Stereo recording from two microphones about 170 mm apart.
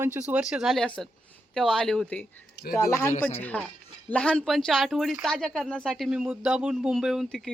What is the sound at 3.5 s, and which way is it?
Speech, 10° left (ahead or behind).